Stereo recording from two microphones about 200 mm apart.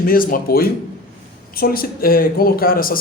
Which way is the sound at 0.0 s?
45° left (ahead or behind).